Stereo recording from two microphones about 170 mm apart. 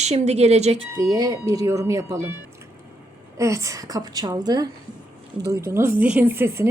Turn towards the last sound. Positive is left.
turn(degrees=-15)  # may be behind; listen again after turning